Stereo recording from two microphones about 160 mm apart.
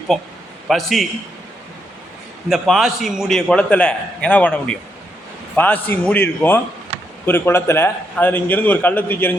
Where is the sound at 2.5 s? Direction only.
Centre (ahead or behind).